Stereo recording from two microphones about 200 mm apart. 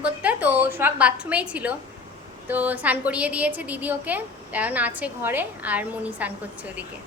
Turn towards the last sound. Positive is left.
turn(degrees=-5)  # may be behind; listen again after turning